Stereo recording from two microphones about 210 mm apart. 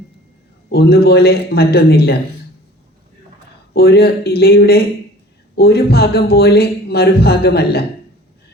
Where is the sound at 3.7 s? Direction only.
50° left (ahead or behind).